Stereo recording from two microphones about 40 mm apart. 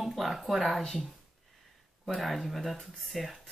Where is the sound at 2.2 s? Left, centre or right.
Centre.